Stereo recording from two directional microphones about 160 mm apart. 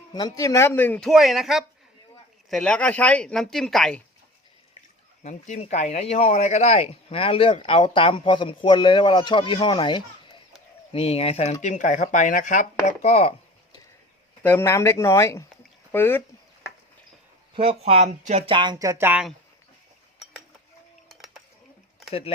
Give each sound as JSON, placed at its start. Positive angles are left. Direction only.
{"t": 0.1, "sound": "a man's voice", "side_deg": 25}
{"t": 1.0, "sound": "speech", "side_deg": 0}
{"t": 5.2, "sound": "speech", "side_deg": 45}
{"t": 14.4, "sound": "speech", "side_deg": 15}
{"t": 17.5, "sound": "speech", "side_deg": -35}